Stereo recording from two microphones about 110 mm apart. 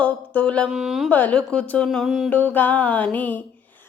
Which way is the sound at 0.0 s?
10° left (ahead or behind).